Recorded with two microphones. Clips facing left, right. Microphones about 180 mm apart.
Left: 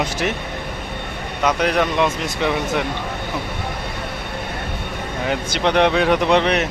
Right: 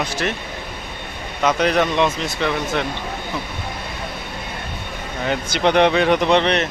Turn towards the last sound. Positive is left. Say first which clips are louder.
# even
turn(degrees=5)  # may be behind; listen again after turning